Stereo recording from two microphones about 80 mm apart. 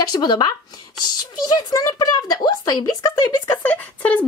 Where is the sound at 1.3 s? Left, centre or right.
Left.